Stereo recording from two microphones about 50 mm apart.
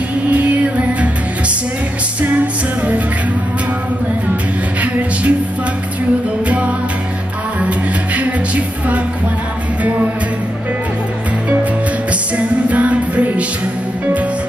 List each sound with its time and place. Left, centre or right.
0.3 s music: right
6.4 s music: right
12.1 s music: right